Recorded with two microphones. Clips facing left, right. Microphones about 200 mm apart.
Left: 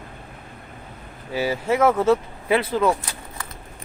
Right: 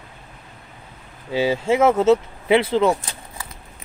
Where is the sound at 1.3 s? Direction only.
25° right (ahead or behind).